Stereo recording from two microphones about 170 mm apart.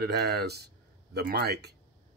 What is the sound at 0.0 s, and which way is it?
Speech, 70° right (ahead or behind).